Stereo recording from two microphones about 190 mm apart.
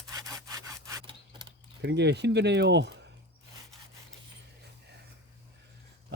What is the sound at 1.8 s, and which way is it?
Speech, 65° right (ahead or behind).